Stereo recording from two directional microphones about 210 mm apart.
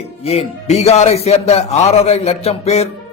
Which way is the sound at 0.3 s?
30° left (ahead or behind).